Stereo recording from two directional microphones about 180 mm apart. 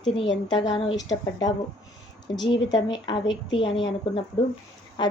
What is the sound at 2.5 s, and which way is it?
A woman's voice, 25° left (ahead or behind).